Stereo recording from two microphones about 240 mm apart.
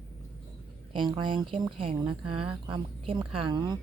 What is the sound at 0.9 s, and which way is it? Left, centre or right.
Speech, centre.